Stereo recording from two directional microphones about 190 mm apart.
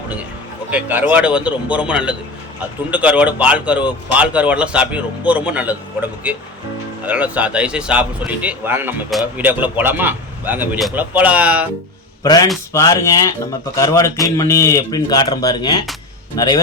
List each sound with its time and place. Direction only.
0.7 s a man's voice: 10° right (ahead or behind)
12.2 s speech: 20° left (ahead or behind)